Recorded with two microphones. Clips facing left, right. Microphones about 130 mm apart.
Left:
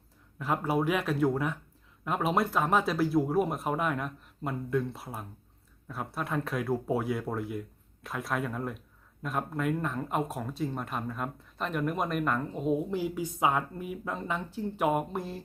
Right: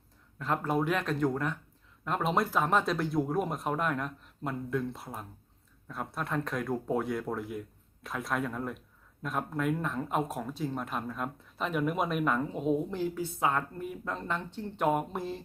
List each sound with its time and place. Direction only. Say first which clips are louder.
0.3 s speech: left 1 dB; 10° left (ahead or behind)